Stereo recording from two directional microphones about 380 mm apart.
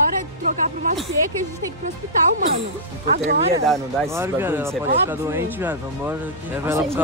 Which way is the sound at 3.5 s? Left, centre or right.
Centre.